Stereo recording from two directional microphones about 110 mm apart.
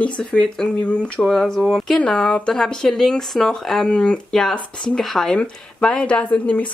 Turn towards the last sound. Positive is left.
turn(degrees=10)  # may be behind; listen again after turning